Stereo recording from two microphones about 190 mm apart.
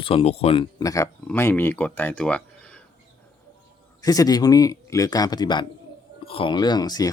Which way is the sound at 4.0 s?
20° left (ahead or behind).